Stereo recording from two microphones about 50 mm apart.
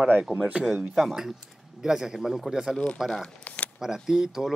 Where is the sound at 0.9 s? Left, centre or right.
Centre.